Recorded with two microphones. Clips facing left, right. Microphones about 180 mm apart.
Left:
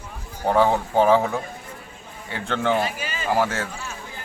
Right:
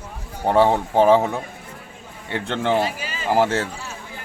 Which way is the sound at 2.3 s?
25° right (ahead or behind).